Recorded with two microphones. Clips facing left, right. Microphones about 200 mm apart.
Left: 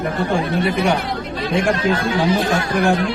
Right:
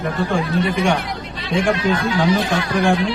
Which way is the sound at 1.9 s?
50° left (ahead or behind).